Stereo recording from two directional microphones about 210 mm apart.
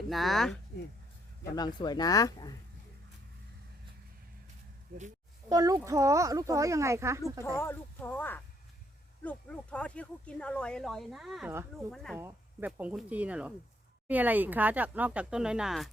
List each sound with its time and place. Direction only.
0.1 s speech: centre (ahead or behind)
1.5 s speech: 20° left (ahead or behind)
4.9 s speech: 45° right (ahead or behind)
5.5 s speech: 15° right (ahead or behind)
7.4 s speech: 10° left (ahead or behind)
12.2 s speech: 10° right (ahead or behind)